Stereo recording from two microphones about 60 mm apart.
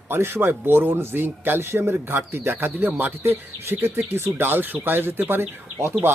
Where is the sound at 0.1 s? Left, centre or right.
Right.